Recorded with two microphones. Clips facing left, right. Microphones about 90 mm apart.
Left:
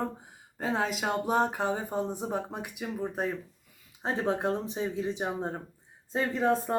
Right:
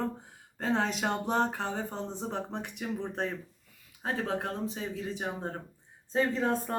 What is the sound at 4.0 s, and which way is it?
Speech, 20° left (ahead or behind).